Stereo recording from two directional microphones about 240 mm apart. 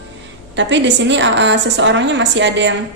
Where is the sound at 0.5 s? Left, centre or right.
Right.